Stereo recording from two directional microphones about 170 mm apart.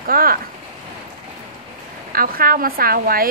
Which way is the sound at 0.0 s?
60° right (ahead or behind).